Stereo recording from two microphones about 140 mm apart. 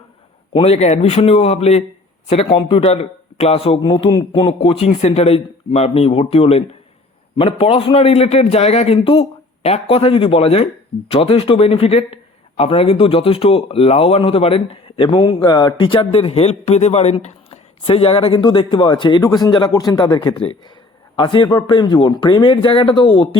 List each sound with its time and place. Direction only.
0.5 s a man's voice: 45° left (ahead or behind)